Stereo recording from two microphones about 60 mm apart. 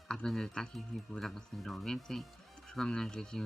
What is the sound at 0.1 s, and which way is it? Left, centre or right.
Speech, centre.